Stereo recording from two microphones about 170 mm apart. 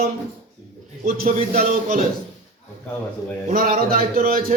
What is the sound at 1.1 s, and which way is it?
Speech, 55° right (ahead or behind).